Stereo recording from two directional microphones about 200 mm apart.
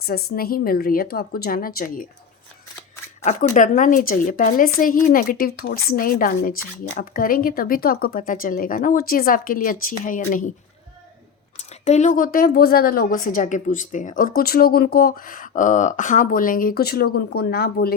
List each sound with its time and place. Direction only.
0.0 s a woman's voice: 50° left (ahead or behind)
3.2 s a woman's voice: 40° left (ahead or behind)
11.9 s a woman's voice: 35° left (ahead or behind)